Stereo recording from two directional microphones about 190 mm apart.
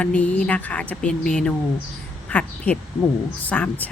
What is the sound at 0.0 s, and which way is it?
Speech, 5° left (ahead or behind).